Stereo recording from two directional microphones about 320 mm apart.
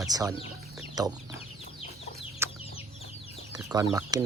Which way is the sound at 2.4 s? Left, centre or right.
Centre.